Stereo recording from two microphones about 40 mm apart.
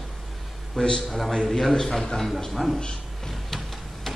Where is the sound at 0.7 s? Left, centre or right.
Centre.